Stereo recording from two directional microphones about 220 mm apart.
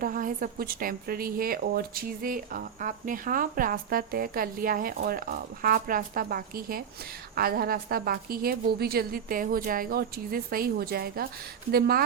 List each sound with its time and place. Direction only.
0.0 s a woman's voice: 40° right (ahead or behind)